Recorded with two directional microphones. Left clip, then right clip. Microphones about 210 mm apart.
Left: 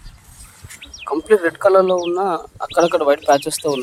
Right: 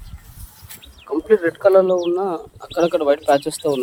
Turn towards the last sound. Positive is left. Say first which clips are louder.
# left 1 dB
turn(degrees=-10)  # may be behind; listen again after turning